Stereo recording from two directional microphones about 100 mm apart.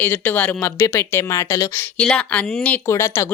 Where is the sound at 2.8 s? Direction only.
30° left (ahead or behind).